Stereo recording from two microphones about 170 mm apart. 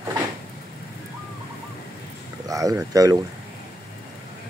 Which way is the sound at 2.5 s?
20° right (ahead or behind).